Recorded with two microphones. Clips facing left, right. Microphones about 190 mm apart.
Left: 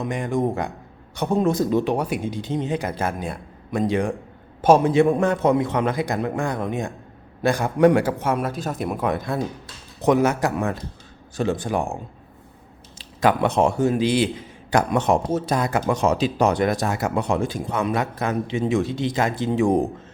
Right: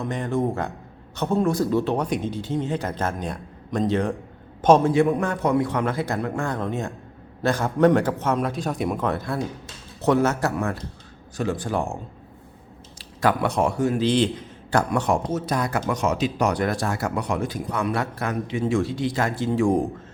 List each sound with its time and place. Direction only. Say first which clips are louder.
0.0 s a man's voice: left 1 dB; 15° left (ahead or behind)
4.9 s a man's voice: left 3 dB; 25° left (ahead or behind)
13.0 s speech: left 3 dB; 20° left (ahead or behind)
14.0 s a man's voice: even; 10° left (ahead or behind)